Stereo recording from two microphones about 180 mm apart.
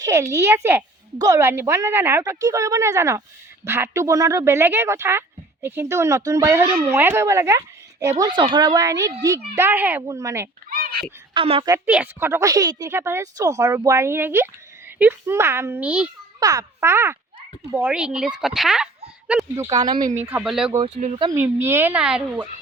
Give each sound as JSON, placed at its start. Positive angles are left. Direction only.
{"t": 0.0, "sound": "speech", "side_deg": -15}
{"t": 8.2, "sound": "speech", "side_deg": -25}
{"t": 10.7, "sound": "honk", "side_deg": -55}
{"t": 11.3, "sound": "a child's voice", "side_deg": -30}
{"t": 11.9, "sound": "speech", "side_deg": -10}
{"t": 16.4, "sound": "speech", "side_deg": -20}
{"t": 21.0, "sound": "speech", "side_deg": -45}
{"t": 21.3, "sound": "speech", "side_deg": -10}